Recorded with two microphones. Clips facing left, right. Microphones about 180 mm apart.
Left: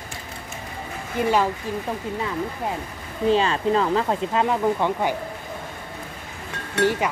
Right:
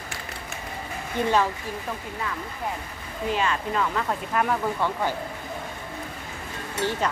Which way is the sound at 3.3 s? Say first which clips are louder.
Left 6 dB; 30° left (ahead or behind).